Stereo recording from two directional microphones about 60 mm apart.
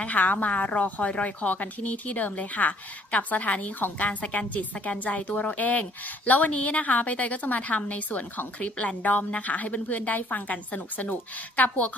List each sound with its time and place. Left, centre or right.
0.0 s a woman's voice: left